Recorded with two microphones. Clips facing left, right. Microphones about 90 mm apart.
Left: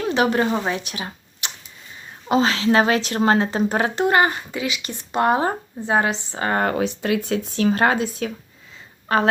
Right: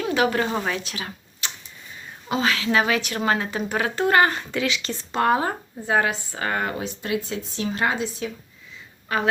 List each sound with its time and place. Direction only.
0.1 s speech: 25° left (ahead or behind)
2.3 s speech: 30° left (ahead or behind)
3.9 s speech: 20° left (ahead or behind)
6.7 s speech: 90° left; by 8.3 s 50° left (ahead or behind)